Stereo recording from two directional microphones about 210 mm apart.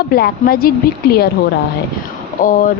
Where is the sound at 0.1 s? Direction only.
45° left (ahead or behind).